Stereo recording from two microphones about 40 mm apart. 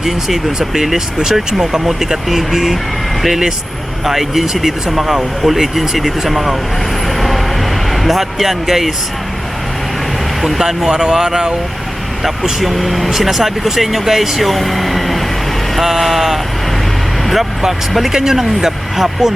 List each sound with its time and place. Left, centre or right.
0.0 s speech: centre
8.0 s speech: centre
10.6 s speech: centre
12.2 s speech: centre
17.6 s speech: centre